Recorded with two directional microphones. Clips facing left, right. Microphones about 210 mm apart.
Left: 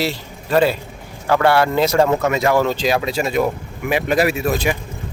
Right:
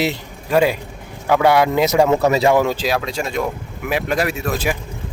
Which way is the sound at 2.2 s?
35° right (ahead or behind).